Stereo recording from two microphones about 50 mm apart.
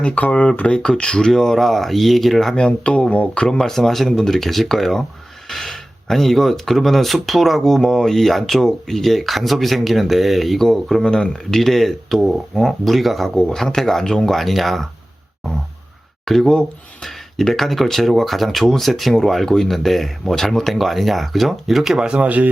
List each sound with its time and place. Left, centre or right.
0.0 s speech: left; by 2.6 s centre
2.6 s speech: centre
3.6 s speech: centre
13.3 s speech: centre
16.2 s speech: centre